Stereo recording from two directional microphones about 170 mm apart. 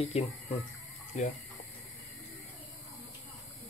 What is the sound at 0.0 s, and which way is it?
Speech, 40° left (ahead or behind).